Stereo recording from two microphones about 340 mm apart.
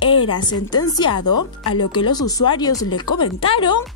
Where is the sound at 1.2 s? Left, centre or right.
Left.